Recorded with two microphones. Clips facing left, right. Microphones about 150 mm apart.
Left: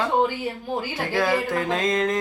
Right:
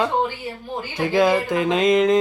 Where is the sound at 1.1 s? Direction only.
15° right (ahead or behind).